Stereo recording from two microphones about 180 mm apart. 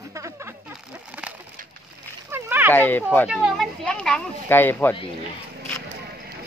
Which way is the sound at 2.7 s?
10° left (ahead or behind).